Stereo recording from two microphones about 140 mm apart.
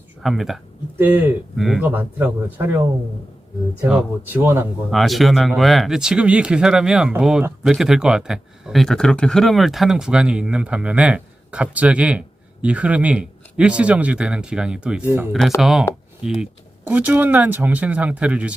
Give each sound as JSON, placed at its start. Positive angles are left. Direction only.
{"t": 0.2, "sound": "speech", "side_deg": 0}
{"t": 0.9, "sound": "speech", "side_deg": -15}
{"t": 1.5, "sound": "speech", "side_deg": 0}
{"t": 1.8, "sound": "speech", "side_deg": -15}
{"t": 3.8, "sound": "speech", "side_deg": -15}
{"t": 4.9, "sound": "speech", "side_deg": 0}